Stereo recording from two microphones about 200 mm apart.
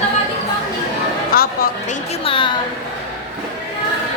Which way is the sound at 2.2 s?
25° left (ahead or behind).